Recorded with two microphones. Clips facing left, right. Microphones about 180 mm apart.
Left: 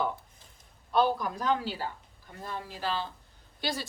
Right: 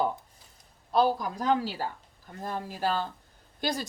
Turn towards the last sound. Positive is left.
turn(degrees=-45)  # may be behind; listen again after turning